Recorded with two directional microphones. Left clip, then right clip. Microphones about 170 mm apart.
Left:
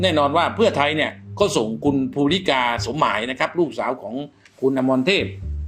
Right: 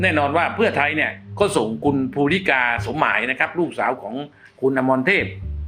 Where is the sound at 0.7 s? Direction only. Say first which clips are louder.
Even; 50° left (ahead or behind).